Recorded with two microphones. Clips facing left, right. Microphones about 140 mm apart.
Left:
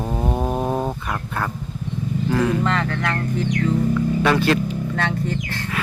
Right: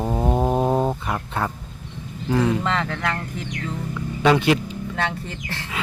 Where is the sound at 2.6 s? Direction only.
Centre (ahead or behind).